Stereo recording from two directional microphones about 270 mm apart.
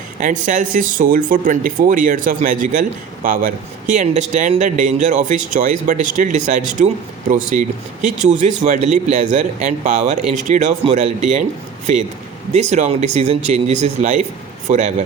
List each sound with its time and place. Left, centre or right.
0.2 s speech: right
12.5 s speech: right